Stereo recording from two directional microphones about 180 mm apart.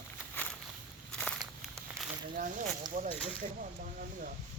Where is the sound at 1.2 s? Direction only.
5° left (ahead or behind).